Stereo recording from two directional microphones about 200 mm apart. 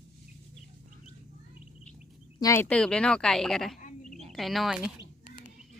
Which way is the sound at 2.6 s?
5° left (ahead or behind).